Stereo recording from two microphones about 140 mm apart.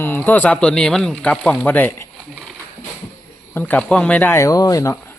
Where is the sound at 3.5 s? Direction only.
10° left (ahead or behind).